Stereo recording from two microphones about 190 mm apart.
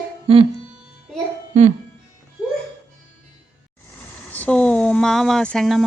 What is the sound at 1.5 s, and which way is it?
Speech, 35° right (ahead or behind).